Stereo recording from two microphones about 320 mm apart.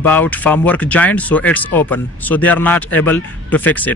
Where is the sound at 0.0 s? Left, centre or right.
Centre.